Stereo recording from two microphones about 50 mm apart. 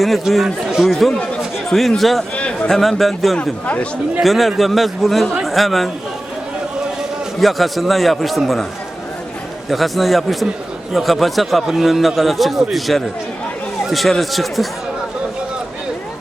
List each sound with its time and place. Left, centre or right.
0.0 s a man's voice: centre
2.3 s a sound: left
2.6 s a man's voice: centre
7.3 s a man's voice: centre
9.6 s a man's voice: centre